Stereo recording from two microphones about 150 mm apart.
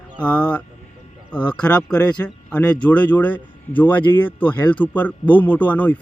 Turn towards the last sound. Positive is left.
turn(degrees=10)  # may be behind; listen again after turning